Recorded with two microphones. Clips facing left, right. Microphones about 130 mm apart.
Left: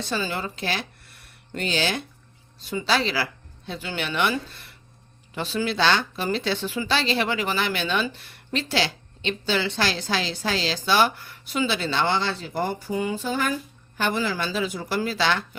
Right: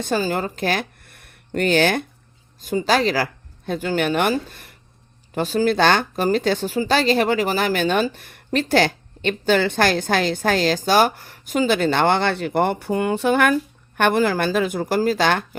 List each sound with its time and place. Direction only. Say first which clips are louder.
0.0 s a woman's voice: right 6 dB; 45° right (ahead or behind)